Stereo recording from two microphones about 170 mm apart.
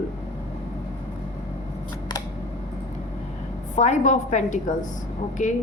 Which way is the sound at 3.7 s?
45° left (ahead or behind).